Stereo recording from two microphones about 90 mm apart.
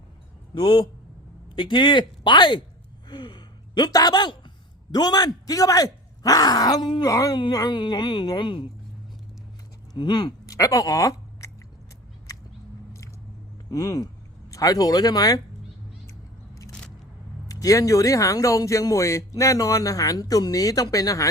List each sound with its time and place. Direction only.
0.5 s speech: 70° left (ahead or behind); by 7.8 s 40° left (ahead or behind)
7.8 s a woman's voice: 55° left (ahead or behind)
10.0 s speech: 55° left (ahead or behind); by 11.5 s 35° left (ahead or behind)
13.7 s speech: 40° left (ahead or behind)
17.5 s speech: 40° left (ahead or behind)